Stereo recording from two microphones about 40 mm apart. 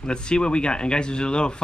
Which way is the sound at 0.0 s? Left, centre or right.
Left.